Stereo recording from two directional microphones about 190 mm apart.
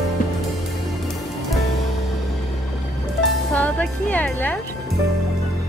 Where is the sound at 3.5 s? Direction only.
5° left (ahead or behind).